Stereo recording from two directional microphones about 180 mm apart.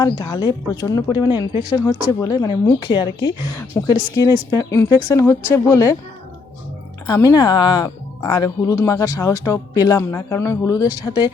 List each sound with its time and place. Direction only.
0.0 s speech: 20° left (ahead or behind)
7.1 s speech: 20° left (ahead or behind)